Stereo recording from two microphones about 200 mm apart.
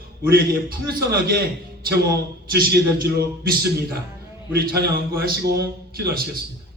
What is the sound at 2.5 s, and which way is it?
A man's voice, 50° right (ahead or behind).